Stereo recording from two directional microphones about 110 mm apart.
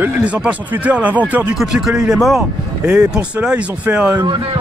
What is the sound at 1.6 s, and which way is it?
Speech, 5° right (ahead or behind).